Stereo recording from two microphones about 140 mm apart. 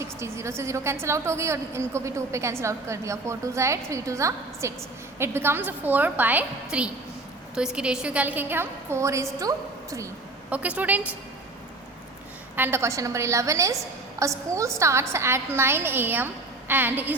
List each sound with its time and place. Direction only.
0.0 s a woman's voice: 20° right (ahead or behind)
10.5 s a woman's voice: 10° right (ahead or behind)
12.5 s a woman's voice: 15° right (ahead or behind)